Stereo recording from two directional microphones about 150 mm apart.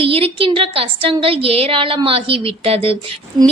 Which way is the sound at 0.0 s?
40° right (ahead or behind).